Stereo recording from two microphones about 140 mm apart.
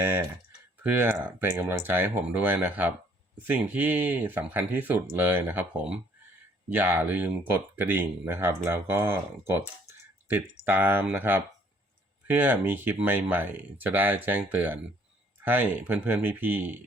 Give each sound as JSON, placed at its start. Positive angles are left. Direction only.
{"t": 0.0, "sound": "speech", "side_deg": -15}